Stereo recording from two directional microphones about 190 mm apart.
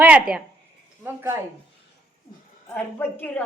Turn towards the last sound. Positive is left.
turn(degrees=10)  # may be behind; listen again after turning